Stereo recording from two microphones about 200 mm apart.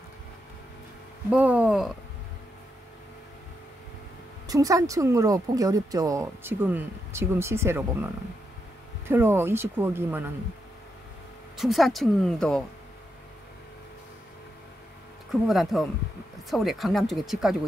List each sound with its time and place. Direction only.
1.3 s speech: 5° right (ahead or behind)
4.5 s speech: 15° right (ahead or behind)
11.5 s speech: centre (ahead or behind)
15.4 s speech: centre (ahead or behind)